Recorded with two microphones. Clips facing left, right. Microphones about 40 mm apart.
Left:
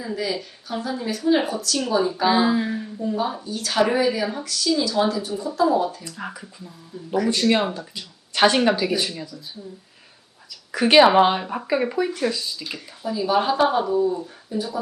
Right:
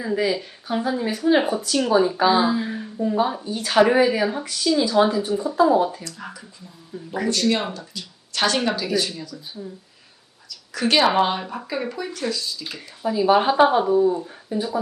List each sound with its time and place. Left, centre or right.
0.0 s a woman's voice: centre
2.2 s speech: centre
2.6 s a woman's voice: centre
6.1 s speech: centre
6.9 s a woman's voice: centre
7.3 s speech: centre
10.7 s speech: centre
12.6 s speech: centre
13.1 s a woman's voice: centre